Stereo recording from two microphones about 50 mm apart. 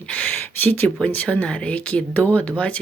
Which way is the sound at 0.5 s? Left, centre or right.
Left.